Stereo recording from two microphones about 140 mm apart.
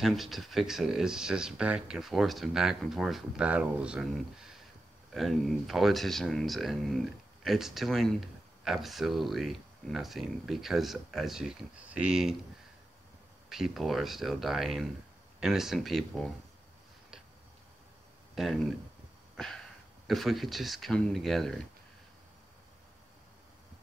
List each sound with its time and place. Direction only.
0.0 s speech: centre (ahead or behind)
13.5 s speech: centre (ahead or behind)
18.3 s speech: centre (ahead or behind)
19.3 s a sound: 5° left (ahead or behind)
20.1 s speech: centre (ahead or behind)